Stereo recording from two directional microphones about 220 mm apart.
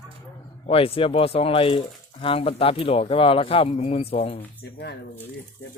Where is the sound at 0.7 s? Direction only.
25° left (ahead or behind).